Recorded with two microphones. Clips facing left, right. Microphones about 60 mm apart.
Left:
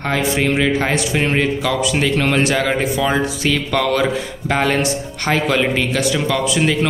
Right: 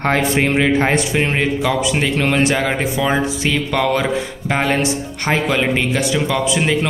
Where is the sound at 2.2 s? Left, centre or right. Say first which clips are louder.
Right 1 dB; centre.